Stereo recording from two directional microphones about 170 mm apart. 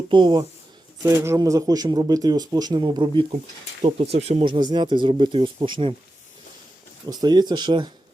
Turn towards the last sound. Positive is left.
turn(degrees=-25)  # may be behind; listen again after turning